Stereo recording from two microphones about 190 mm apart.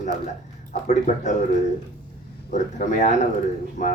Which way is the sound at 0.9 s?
40° left (ahead or behind).